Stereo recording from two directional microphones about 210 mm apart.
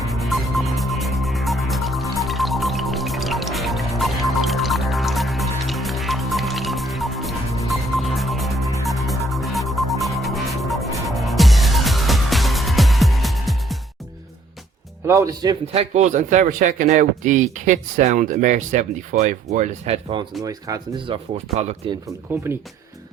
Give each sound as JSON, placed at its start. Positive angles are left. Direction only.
{"t": 0.1, "sound": "music", "side_deg": 0}
{"t": 15.0, "sound": "a man's voice", "side_deg": -15}
{"t": 20.4, "sound": "speech", "side_deg": -15}
{"t": 22.0, "sound": "speech", "side_deg": -10}